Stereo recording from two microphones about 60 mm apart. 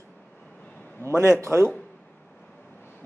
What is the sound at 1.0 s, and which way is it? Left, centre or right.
Speech, right.